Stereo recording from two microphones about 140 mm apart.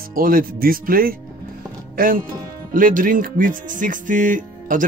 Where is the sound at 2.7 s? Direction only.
75° right (ahead or behind).